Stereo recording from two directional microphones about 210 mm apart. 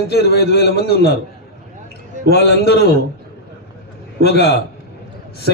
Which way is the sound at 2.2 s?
50° left (ahead or behind).